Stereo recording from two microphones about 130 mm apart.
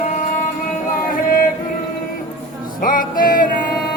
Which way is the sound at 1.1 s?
90° left.